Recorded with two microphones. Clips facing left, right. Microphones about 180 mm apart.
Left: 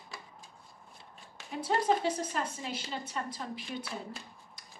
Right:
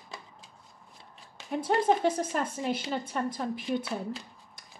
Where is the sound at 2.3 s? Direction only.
50° right (ahead or behind).